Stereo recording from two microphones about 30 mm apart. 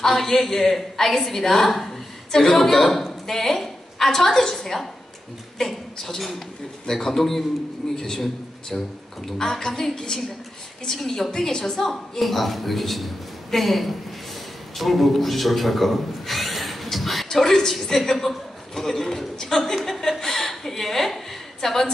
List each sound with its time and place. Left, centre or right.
0.0 s a woman's voice: centre
17.3 s a woman's voice: centre
18.8 s a woman's voice: centre